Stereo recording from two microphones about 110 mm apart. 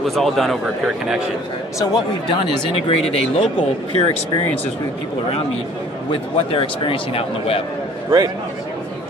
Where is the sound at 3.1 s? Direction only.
60° left (ahead or behind).